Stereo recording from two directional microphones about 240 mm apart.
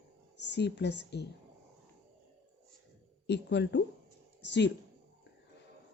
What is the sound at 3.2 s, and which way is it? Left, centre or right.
A woman's voice, left.